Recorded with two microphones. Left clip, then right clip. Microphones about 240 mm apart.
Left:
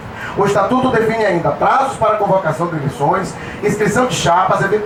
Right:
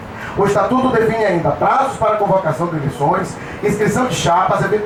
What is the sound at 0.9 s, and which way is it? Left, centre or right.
A man's voice, centre.